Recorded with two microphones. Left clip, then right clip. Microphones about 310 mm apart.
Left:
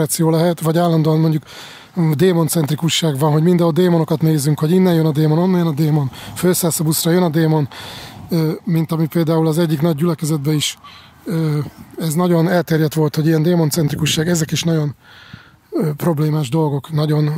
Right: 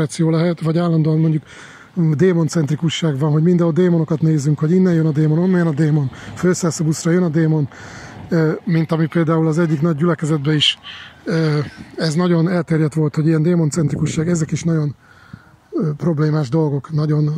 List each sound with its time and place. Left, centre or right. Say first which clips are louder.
0.0 s speech: left 3 dB; centre
5.9 s speech: left 1 dB; centre
15.7 s speech: left 2 dB; left
16.2 s speech: right 1 dB; centre
16.6 s speech: left 1 dB; left
17.1 s speech: left 1 dB; left